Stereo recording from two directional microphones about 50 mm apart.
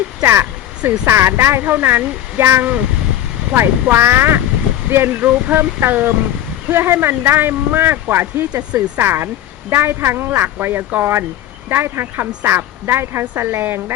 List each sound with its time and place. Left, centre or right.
0.2 s speech: right